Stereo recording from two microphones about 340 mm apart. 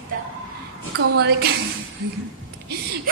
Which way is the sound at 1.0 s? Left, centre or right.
Right.